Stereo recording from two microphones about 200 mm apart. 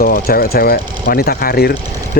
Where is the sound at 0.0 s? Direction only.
50° left (ahead or behind).